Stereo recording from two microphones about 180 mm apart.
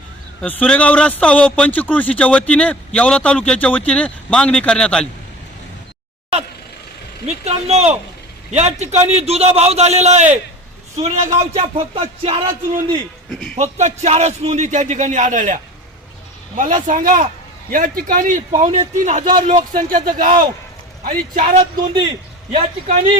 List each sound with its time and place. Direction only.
0.4 s speech: 10° left (ahead or behind)
7.3 s speech: 35° right (ahead or behind)
13.3 s speech: 5° left (ahead or behind)
13.6 s speech: 40° right (ahead or behind)
16.6 s speech: 45° right (ahead or behind)
20.1 s speech: 50° right (ahead or behind)